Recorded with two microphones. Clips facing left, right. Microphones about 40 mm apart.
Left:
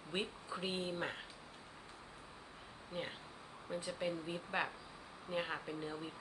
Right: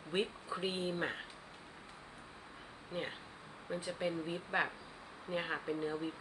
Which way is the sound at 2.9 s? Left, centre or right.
Centre.